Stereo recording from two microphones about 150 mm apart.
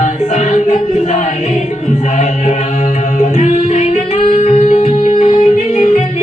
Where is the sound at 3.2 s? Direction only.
50° left (ahead or behind).